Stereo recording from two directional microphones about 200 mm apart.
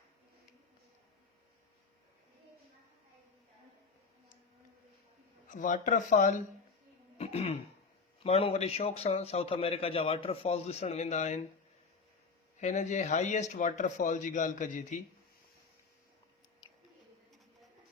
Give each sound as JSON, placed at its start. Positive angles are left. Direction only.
{"t": 5.5, "sound": "a man's voice", "side_deg": 40}
{"t": 7.2, "sound": "throat clearing", "side_deg": 30}
{"t": 8.2, "sound": "a man's voice", "side_deg": 30}
{"t": 12.5, "sound": "a man's voice", "side_deg": 35}